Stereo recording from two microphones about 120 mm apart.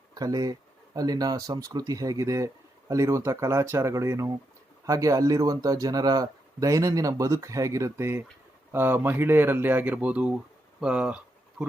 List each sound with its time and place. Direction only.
0.1 s speech: 30° right (ahead or behind); by 11.2 s 10° right (ahead or behind)